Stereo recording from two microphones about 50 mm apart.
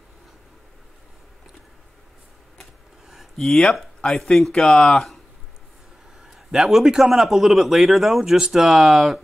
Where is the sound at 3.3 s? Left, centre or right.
Centre.